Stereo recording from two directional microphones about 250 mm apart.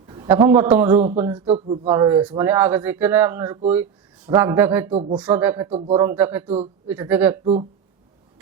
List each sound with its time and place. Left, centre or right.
0.1 s a man's voice: centre
1.2 s speech: right
1.9 s speech: centre
4.9 s speech: right
5.1 s speech: centre
5.6 s speech: right; by 7.3 s centre
7.4 s speech: right